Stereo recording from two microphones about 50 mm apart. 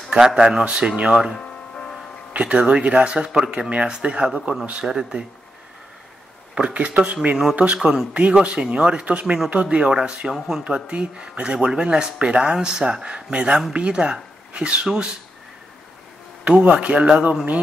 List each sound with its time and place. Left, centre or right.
0.1 s speech: centre
2.3 s speech: right
6.5 s speech: right
10.6 s speech: right
16.4 s speech: right